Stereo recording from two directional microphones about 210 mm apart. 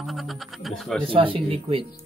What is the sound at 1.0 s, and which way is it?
Speech, 25° right (ahead or behind).